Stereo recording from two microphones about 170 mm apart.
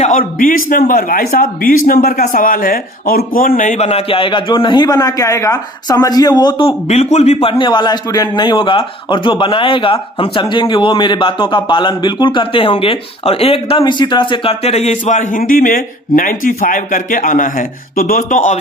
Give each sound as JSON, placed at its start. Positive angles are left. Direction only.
{"t": 0.0, "sound": "a man's voice", "side_deg": 50}